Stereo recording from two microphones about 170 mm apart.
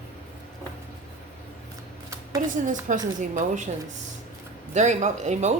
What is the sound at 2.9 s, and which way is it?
Speech, 50° right (ahead or behind).